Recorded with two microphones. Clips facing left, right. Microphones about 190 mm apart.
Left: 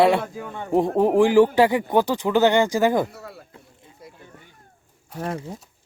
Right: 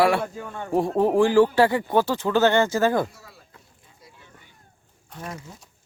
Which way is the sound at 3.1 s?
60° left (ahead or behind).